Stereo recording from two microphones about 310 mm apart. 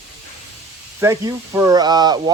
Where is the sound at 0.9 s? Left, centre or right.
Centre.